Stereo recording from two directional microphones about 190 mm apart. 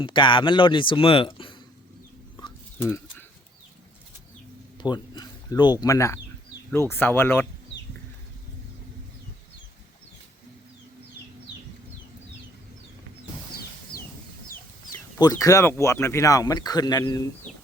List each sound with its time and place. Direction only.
0.0 s speech: 25° left (ahead or behind)
2.7 s bird: 10° left (ahead or behind)
4.8 s a sound: 20° left (ahead or behind)
5.8 s speech: 15° left (ahead or behind)
14.4 s chicken: 50° left (ahead or behind)
15.2 s speech: 20° left (ahead or behind)